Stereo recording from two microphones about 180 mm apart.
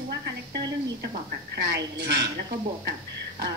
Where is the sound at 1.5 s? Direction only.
75° right (ahead or behind).